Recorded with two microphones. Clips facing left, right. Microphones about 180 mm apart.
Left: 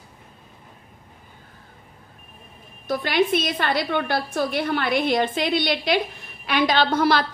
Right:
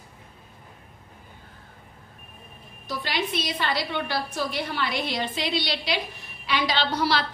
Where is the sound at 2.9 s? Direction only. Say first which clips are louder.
Left 8 dB; 50° left (ahead or behind).